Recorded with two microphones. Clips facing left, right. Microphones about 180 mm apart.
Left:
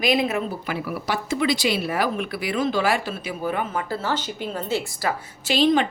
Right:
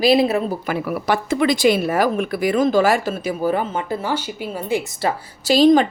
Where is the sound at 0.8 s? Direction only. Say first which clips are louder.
Right 7 dB; 55° right (ahead or behind); by 3.8 s 35° right (ahead or behind).